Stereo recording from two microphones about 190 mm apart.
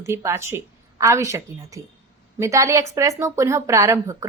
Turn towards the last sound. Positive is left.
turn(degrees=-15)  # may be behind; listen again after turning